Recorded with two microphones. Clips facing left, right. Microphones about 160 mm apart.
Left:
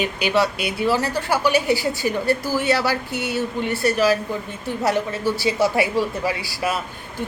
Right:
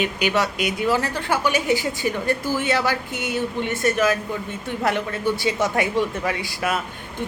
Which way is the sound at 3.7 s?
35° left (ahead or behind).